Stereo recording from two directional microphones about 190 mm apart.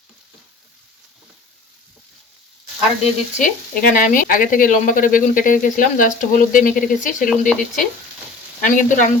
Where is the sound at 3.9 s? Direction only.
45° left (ahead or behind).